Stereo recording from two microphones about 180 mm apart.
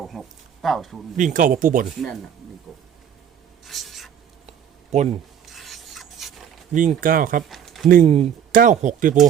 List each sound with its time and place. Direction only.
0.1 s speech: centre (ahead or behind)
1.1 s speech: 45° right (ahead or behind)
2.7 s speech: centre (ahead or behind)
3.6 s writing: centre (ahead or behind)
4.9 s speech: 40° right (ahead or behind)
5.5 s rub: centre (ahead or behind)
6.7 s speech: 50° right (ahead or behind)
7.4 s a sound: centre (ahead or behind)
8.0 s speech: 35° right (ahead or behind)
8.5 s speech: 45° right (ahead or behind)